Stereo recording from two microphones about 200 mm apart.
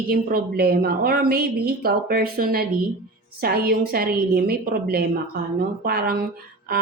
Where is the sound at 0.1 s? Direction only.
50° right (ahead or behind).